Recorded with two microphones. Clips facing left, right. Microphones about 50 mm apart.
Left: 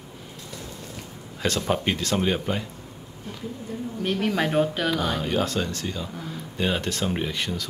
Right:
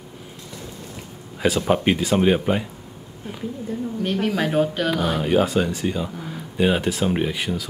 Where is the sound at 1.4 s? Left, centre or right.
Centre.